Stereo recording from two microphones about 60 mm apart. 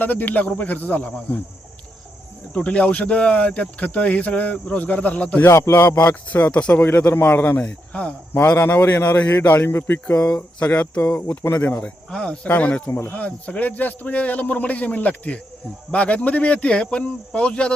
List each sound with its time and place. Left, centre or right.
0.0 s speech: left
2.5 s speech: left
5.5 s speech: left
6.3 s a man's voice: left
7.6 s speech: centre
8.3 s a man's voice: left
10.2 s speech: left
10.6 s speech: left